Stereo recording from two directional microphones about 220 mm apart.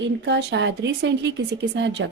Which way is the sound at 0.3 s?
50° right (ahead or behind).